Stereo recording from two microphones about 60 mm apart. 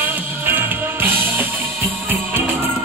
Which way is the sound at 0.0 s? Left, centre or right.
Right.